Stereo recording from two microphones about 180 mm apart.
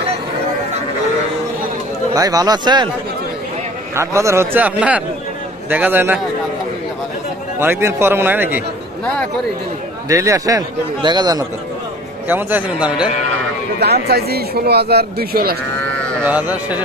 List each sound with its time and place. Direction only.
2.1 s a man's voice: 20° right (ahead or behind)
3.9 s a man's voice: 15° right (ahead or behind)
7.5 s a man's voice: 15° right (ahead or behind)
9.0 s speech: 5° left (ahead or behind)
10.0 s a man's voice: 15° right (ahead or behind)
12.3 s a man's voice: 10° right (ahead or behind)
13.7 s speech: 60° right (ahead or behind)
16.3 s a man's voice: 10° right (ahead or behind)